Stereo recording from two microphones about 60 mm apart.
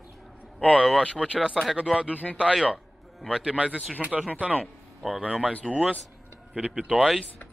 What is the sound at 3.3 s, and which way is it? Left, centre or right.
Speech, centre.